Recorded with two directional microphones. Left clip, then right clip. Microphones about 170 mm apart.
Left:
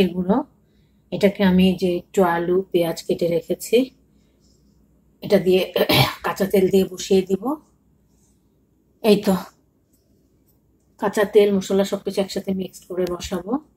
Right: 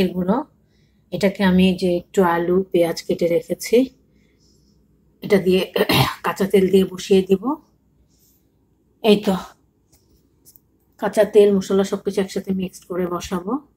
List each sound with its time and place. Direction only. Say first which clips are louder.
0.2 s a woman's voice: even; centre (ahead or behind)
5.2 s speech: even; 15° right (ahead or behind)
11.0 s a woman's voice: right 2 dB; centre (ahead or behind); by 13.4 s 20° right (ahead or behind)